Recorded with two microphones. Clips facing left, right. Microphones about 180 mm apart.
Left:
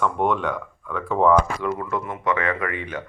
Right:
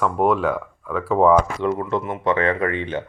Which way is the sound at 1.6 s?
25° right (ahead or behind).